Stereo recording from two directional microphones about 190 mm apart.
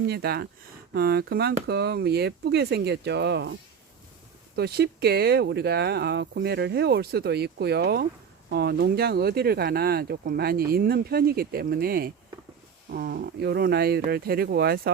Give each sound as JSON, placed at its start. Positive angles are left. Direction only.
{"t": 0.1, "sound": "speech", "side_deg": -55}
{"t": 4.5, "sound": "speech", "side_deg": -60}